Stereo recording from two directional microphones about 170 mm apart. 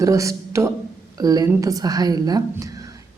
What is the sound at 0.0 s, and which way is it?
A man's voice, 20° right (ahead or behind).